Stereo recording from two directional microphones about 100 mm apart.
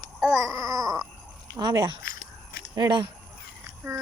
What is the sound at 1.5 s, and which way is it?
Speech, 45° right (ahead or behind).